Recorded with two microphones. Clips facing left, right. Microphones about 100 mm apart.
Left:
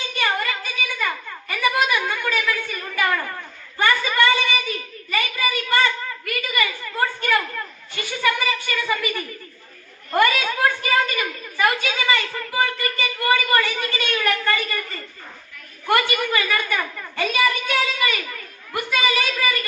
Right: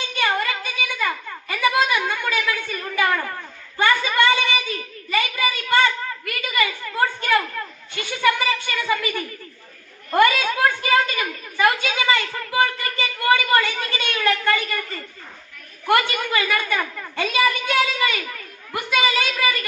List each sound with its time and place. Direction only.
0.2 s a sound: 20° right (ahead or behind)
3.8 s a woman's voice: 20° right (ahead or behind)
10.2 s a woman's voice: 15° right (ahead or behind)
15.9 s a woman's voice: 15° right (ahead or behind)